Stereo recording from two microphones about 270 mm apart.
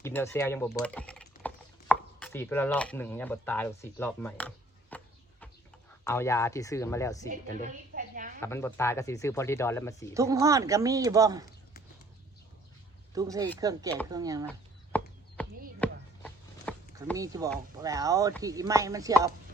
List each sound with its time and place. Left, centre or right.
0.0 s speech: centre
0.9 s a sound: centre
6.1 s speech: centre
7.3 s a sound: right
8.4 s speech: centre
10.2 s speech: centre
13.1 s speech: centre
14.9 s chop: centre
15.4 s a sound: centre
17.2 s speech: centre